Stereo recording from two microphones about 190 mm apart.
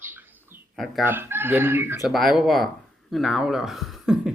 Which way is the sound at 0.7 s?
Centre (ahead or behind).